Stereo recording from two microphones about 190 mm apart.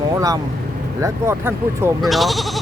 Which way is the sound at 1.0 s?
15° right (ahead or behind).